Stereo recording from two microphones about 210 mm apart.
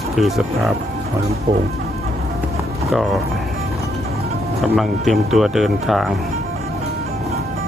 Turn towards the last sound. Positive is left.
turn(degrees=0)  # may be behind; listen again after turning